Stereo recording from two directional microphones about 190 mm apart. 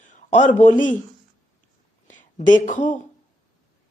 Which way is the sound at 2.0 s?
40° left (ahead or behind).